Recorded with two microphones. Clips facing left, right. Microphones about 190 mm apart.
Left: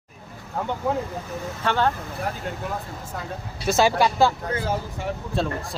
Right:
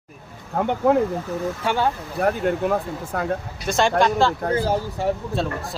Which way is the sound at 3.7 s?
5° left (ahead or behind).